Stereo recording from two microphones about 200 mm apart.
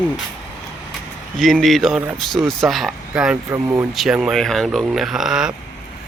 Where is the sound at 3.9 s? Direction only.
Centre (ahead or behind).